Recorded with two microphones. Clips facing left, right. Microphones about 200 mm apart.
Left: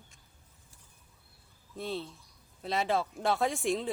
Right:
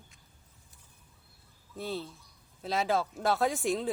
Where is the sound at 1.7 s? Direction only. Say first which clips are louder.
Even; centre (ahead or behind).